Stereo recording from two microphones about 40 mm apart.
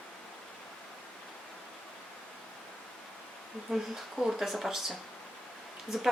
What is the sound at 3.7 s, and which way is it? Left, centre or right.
Speech, centre.